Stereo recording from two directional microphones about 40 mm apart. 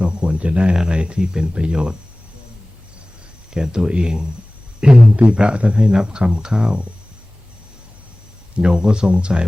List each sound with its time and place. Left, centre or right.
0.0 s speech: right
3.5 s speech: centre
8.5 s speech: right